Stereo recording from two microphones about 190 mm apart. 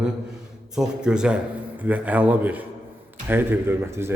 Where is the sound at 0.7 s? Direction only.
5° right (ahead or behind).